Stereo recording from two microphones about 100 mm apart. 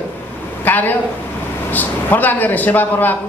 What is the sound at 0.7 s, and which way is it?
A man's voice, 20° left (ahead or behind).